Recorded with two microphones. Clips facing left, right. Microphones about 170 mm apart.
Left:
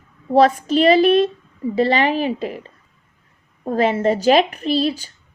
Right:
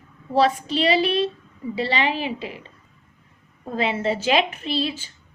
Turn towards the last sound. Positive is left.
turn(degrees=40)  # may be behind; listen again after turning